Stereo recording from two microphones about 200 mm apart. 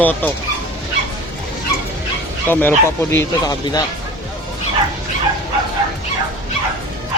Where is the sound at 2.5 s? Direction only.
10° left (ahead or behind).